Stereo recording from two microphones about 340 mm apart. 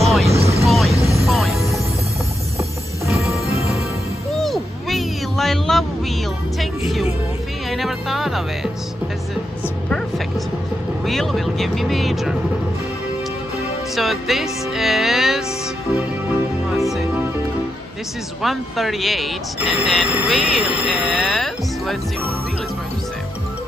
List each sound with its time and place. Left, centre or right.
0.0 s vehicle: centre
0.4 s vehicle: centre
0.7 s vehicle: centre
1.0 s music: centre
3.2 s music: centre
4.4 s a sound: centre
6.6 s music: centre
9.8 s music: centre
13.9 s music: centre
16.7 s music: centre
18.4 s speech: centre